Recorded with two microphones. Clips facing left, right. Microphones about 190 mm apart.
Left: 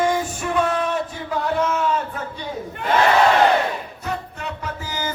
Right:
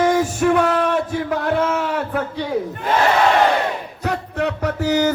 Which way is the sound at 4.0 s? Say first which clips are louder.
Right 10 dB; 70° right (ahead or behind).